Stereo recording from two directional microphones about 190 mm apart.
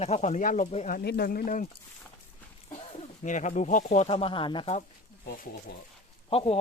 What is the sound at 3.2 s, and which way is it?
Speech, 40° left (ahead or behind).